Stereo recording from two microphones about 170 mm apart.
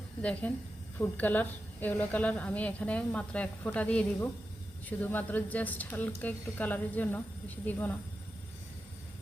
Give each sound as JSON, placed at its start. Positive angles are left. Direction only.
{"t": 0.2, "sound": "a woman's voice", "side_deg": 5}